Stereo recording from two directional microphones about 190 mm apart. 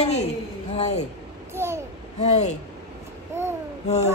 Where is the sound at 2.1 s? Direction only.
35° left (ahead or behind).